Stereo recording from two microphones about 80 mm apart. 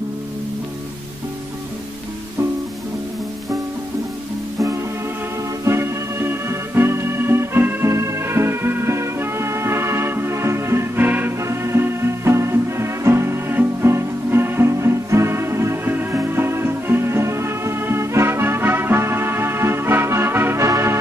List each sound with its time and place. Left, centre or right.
5.7 s music: right